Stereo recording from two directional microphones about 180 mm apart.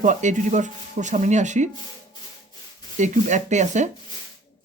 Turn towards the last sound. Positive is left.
turn(degrees=-40)  # may be behind; listen again after turning